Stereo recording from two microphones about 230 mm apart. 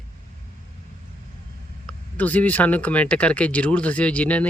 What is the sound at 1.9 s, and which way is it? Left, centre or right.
Speech, centre.